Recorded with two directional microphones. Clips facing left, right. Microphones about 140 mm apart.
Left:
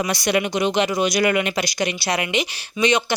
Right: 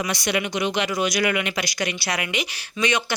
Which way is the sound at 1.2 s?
35° left (ahead or behind).